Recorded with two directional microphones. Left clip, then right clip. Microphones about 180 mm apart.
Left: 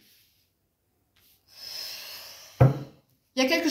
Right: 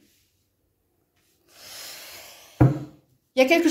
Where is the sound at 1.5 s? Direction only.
50° right (ahead or behind).